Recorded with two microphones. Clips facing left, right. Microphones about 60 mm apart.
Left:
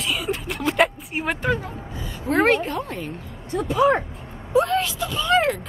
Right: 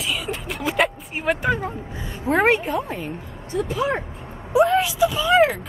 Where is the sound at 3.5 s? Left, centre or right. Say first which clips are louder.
Left 4 dB; left.